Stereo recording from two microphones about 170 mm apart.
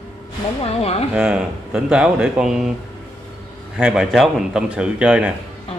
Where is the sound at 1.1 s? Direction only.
5° right (ahead or behind).